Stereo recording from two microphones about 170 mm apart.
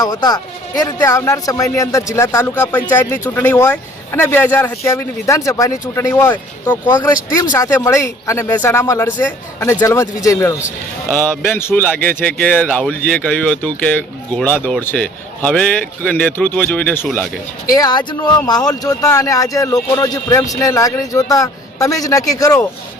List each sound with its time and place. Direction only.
0.0 s speech: 25° left (ahead or behind)
17.7 s speech: 20° left (ahead or behind)